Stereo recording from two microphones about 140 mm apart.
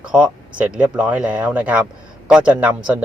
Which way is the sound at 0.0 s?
5° right (ahead or behind).